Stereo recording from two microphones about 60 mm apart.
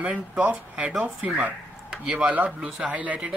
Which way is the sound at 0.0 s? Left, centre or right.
Right.